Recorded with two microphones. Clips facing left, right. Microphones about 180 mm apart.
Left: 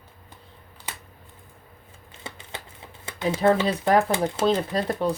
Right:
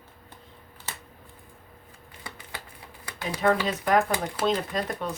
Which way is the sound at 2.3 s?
25° left (ahead or behind).